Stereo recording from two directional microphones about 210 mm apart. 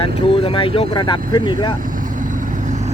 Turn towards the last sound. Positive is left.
turn(degrees=20)  # may be behind; listen again after turning